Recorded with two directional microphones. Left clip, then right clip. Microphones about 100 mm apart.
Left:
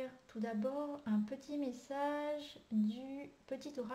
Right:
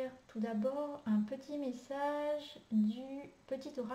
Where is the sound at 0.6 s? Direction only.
5° left (ahead or behind).